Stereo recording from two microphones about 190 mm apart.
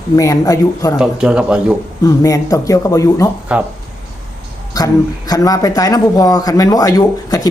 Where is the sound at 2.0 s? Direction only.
15° left (ahead or behind).